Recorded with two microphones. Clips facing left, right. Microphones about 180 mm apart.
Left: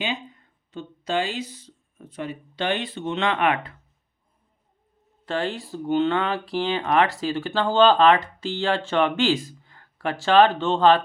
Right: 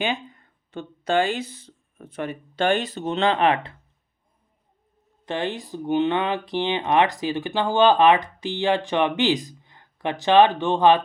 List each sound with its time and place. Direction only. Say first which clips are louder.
0.7 s speech: right 3 dB; 55° right (ahead or behind); by 3.8 s 30° right (ahead or behind)
5.2 s speech: even; 20° right (ahead or behind)